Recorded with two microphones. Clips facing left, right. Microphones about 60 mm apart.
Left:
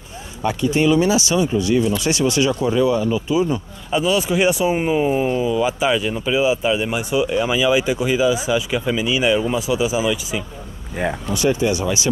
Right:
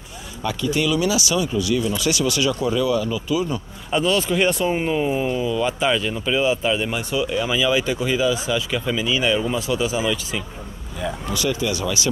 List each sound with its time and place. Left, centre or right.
0.4 s speech: left
3.9 s speech: centre
11.3 s speech: left